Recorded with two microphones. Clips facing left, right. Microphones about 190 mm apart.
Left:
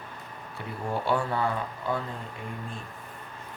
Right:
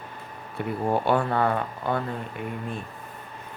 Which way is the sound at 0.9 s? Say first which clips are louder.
Right 4 dB; 60° right (ahead or behind).